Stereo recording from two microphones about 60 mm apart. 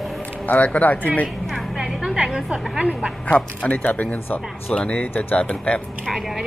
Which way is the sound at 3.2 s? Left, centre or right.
Left.